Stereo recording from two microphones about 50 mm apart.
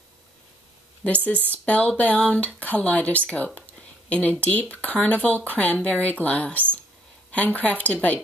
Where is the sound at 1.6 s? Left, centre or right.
Left.